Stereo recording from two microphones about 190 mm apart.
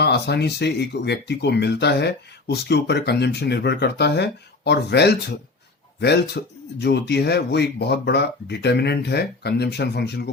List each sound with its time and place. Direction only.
0.0 s speech: 60° left (ahead or behind)